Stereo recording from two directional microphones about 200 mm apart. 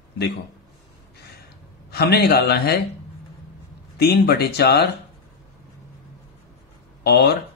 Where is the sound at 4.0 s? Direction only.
50° left (ahead or behind).